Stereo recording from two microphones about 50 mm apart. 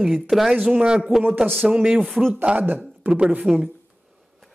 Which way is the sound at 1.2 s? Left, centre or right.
Right.